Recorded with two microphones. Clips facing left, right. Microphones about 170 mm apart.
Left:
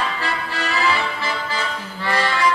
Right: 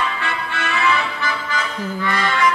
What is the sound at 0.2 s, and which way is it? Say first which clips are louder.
Music: even; 35° left (ahead or behind).